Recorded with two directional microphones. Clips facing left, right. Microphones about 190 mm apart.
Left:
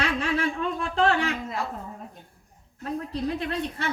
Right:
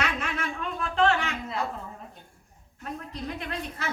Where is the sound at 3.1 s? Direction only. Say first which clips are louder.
Left 6 dB; 35° left (ahead or behind).